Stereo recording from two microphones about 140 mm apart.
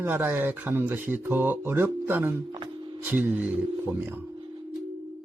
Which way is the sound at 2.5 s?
35° right (ahead or behind).